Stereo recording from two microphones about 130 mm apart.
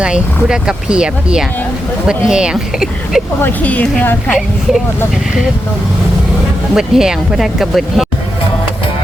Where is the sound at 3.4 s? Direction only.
10° left (ahead or behind).